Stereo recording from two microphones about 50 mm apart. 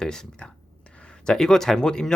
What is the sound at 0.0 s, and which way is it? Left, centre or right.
Speech, centre.